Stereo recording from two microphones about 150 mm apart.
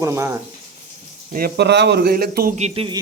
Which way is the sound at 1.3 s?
80° right.